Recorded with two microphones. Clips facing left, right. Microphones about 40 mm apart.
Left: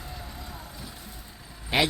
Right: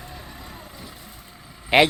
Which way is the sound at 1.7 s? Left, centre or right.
Right.